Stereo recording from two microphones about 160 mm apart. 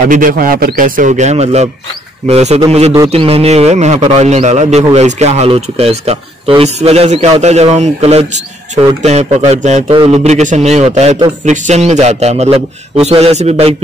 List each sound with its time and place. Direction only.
0.1 s a man's voice: 60° right (ahead or behind); by 13.7 s 40° right (ahead or behind)